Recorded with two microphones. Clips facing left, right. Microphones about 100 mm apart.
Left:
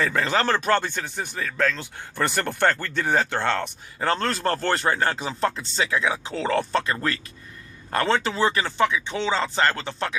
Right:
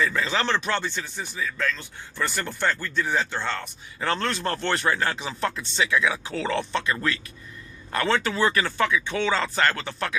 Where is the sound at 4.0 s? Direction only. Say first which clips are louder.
Left 2 dB; 35° left (ahead or behind).